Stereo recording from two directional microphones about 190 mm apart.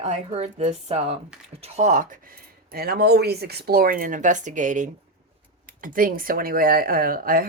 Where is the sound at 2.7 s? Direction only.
55° right (ahead or behind).